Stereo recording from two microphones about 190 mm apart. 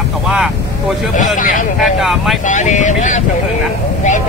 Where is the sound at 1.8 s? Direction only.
Centre (ahead or behind).